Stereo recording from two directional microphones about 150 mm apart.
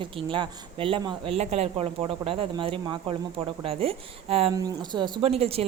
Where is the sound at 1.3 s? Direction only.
45° right (ahead or behind).